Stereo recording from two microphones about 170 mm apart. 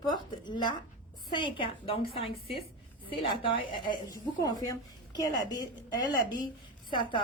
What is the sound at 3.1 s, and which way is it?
A woman's voice, 30° left (ahead or behind).